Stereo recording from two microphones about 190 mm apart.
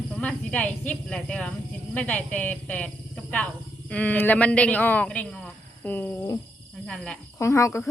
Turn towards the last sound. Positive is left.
turn(degrees=15)  # may be behind; listen again after turning